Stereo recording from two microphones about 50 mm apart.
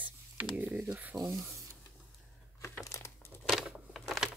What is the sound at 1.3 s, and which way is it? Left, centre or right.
Speech, right.